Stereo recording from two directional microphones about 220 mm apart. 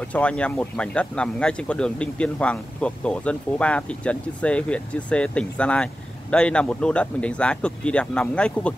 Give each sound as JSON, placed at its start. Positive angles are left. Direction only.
{"t": 0.0, "sound": "speech", "side_deg": 5}